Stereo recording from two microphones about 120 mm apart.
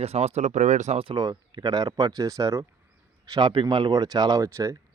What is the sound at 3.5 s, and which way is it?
Speech, 45° right (ahead or behind).